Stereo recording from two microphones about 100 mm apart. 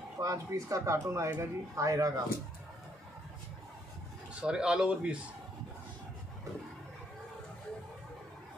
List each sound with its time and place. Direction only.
0.2 s speech: 35° right (ahead or behind)
4.4 s speech: 10° right (ahead or behind)